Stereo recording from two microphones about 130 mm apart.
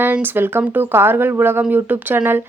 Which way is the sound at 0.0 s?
15° right (ahead or behind).